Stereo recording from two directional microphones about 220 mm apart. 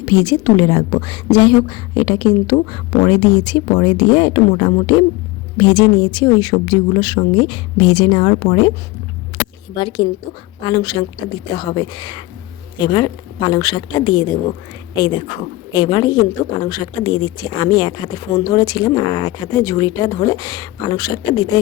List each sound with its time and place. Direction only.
0.0 s a woman's voice: 20° left (ahead or behind)
9.7 s a woman's voice: 20° left (ahead or behind)